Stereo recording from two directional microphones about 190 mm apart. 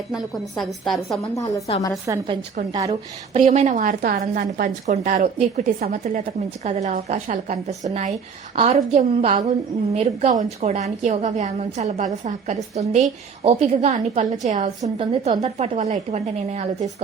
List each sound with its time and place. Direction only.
0.1 s a woman's voice: centre (ahead or behind)
2.0 s a woman's voice: 25° right (ahead or behind); by 14.7 s 40° right (ahead or behind)
14.8 s a woman's voice: 30° right (ahead or behind)